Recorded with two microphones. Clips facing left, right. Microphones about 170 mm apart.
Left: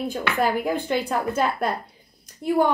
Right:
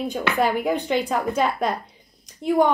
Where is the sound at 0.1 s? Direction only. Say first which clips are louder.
Right 2 dB; 5° left (ahead or behind).